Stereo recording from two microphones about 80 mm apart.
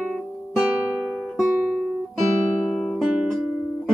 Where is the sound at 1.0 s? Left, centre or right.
Centre.